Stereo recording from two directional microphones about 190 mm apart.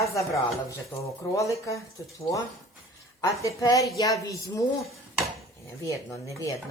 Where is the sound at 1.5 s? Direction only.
15° left (ahead or behind).